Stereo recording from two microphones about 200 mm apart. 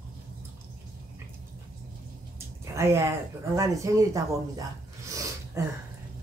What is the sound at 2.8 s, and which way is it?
Speech, 15° right (ahead or behind).